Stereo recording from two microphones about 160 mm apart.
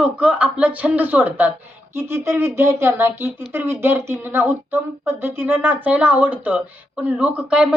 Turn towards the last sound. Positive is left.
turn(degrees=-5)  # may be behind; listen again after turning